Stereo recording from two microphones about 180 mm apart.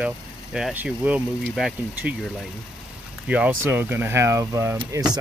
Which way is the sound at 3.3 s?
10° right (ahead or behind).